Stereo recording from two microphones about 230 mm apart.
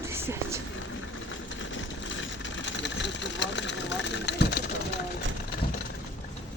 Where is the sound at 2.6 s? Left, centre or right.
Left.